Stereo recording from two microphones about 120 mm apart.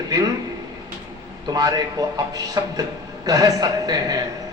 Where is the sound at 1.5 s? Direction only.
30° right (ahead or behind).